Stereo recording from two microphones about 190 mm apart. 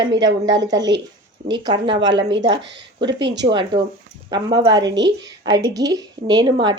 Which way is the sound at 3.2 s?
70° right (ahead or behind).